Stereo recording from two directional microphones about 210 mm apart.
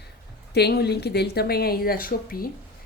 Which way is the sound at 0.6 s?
50° left (ahead or behind).